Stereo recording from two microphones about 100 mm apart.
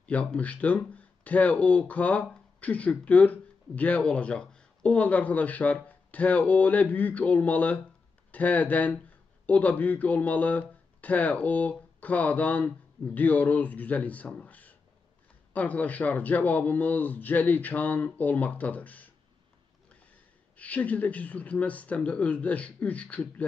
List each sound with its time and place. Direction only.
0.0 s speech: 10° left (ahead or behind)
20.5 s speech: 15° left (ahead or behind)